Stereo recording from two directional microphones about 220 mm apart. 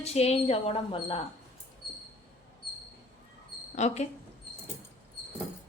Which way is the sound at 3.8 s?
30° left (ahead or behind).